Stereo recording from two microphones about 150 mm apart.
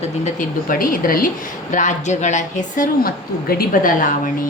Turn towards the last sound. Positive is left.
turn(degrees=65)  # may be behind; listen again after turning